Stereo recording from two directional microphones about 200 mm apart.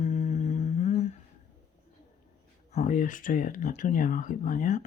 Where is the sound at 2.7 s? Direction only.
40° left (ahead or behind).